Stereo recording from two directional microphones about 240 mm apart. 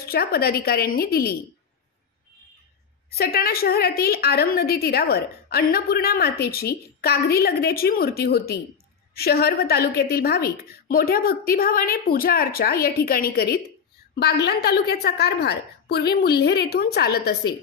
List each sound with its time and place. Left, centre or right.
0.0 s a woman's voice: left
3.1 s a woman's voice: left